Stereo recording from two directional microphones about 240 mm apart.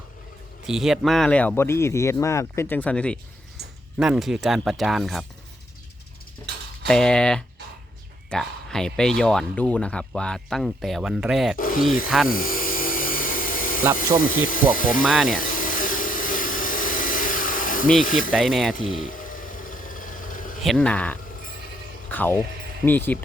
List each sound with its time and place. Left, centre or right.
0.7 s speech: centre
6.5 s mechanisms: right
6.8 s speech: centre
11.5 s speech: left
12.3 s dental drill: left
14.2 s speech: left
15.0 s speech: centre
15.4 s vacuum cleaner: left
18.0 s speech: left
18.3 s speech: centre
18.8 s a sound: left
20.6 s speech: centre